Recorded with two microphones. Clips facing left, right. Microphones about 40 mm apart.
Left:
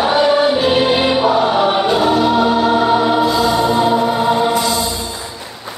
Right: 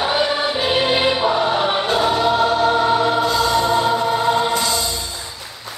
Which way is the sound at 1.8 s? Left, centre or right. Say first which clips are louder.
Left 4 dB; left.